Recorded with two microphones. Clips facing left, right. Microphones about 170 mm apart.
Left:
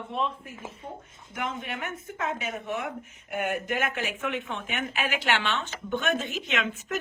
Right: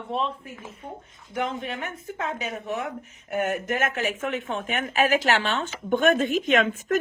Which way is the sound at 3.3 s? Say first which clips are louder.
Right 3 dB; 40° right (ahead or behind).